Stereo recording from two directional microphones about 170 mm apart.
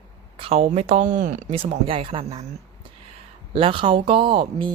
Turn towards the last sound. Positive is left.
turn(degrees=-30)  # may be behind; listen again after turning